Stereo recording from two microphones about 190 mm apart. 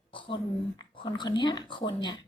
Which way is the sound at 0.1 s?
25° left (ahead or behind).